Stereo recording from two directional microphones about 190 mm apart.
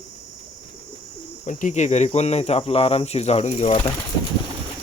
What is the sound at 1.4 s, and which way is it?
Speech, 40° left (ahead or behind).